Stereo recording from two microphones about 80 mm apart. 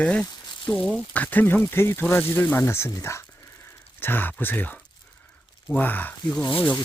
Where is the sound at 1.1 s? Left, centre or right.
Left.